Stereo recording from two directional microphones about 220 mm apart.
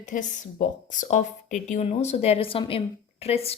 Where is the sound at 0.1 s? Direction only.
35° left (ahead or behind).